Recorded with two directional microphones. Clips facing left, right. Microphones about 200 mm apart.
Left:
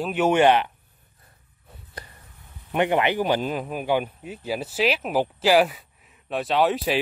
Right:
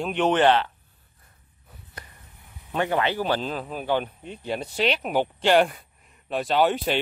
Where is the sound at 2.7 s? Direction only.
15° left (ahead or behind).